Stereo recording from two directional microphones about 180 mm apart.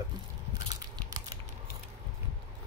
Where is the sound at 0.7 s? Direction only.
20° right (ahead or behind).